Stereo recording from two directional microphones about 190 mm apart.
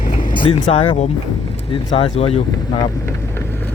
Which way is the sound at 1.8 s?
35° left (ahead or behind).